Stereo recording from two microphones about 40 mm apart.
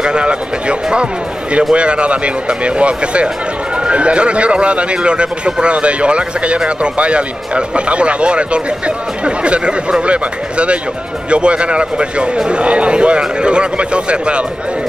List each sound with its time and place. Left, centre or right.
0.0 s speech: right